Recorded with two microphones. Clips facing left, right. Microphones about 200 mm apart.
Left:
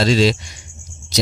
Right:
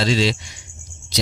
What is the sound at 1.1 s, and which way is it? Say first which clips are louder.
Music: left 4 dB; 45° left (ahead or behind).